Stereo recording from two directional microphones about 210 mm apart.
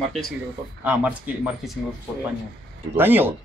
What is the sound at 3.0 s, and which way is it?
Speech, 10° right (ahead or behind).